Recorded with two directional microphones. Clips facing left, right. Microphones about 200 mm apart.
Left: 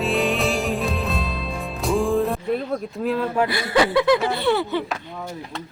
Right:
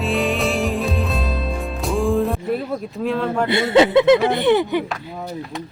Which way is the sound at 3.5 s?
25° right (ahead or behind).